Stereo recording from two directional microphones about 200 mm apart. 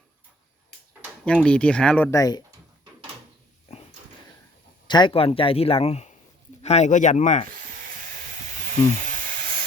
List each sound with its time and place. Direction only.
1.2 s speech: 5° left (ahead or behind)
4.9 s speech: 25° left (ahead or behind)
9.1 s hiss: 40° right (ahead or behind)